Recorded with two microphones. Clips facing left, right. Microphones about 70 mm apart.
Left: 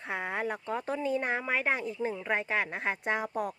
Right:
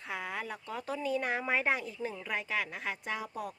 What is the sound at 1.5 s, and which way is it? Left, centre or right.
Speech, centre.